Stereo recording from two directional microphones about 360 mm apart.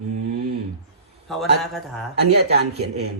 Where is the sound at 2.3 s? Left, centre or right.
Right.